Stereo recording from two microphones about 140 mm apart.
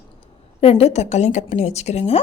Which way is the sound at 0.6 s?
45° left (ahead or behind).